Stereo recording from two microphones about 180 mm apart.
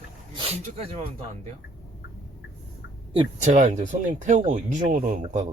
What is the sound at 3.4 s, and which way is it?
Speech, 40° right (ahead or behind).